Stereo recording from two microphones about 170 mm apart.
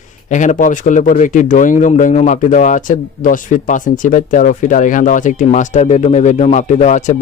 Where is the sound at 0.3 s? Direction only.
45° left (ahead or behind).